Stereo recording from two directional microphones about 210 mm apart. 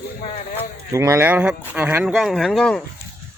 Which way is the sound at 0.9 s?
15° right (ahead or behind).